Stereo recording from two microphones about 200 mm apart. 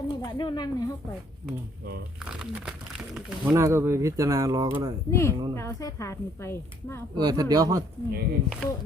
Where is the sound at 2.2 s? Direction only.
5° right (ahead or behind).